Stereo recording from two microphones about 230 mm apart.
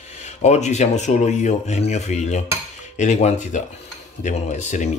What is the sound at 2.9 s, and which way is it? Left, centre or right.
Cutlery, left.